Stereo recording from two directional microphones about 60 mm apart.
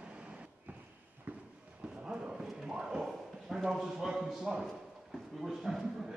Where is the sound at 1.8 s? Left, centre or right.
Centre.